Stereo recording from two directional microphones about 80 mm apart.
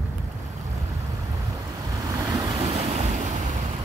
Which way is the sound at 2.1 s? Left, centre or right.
Right.